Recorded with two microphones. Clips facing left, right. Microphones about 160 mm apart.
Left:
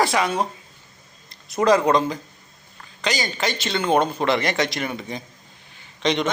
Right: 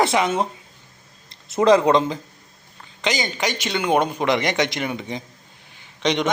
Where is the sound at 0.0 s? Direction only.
20° right (ahead or behind).